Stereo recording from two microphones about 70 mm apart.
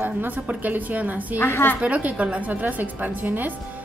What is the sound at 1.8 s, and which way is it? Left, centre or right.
Speech, centre.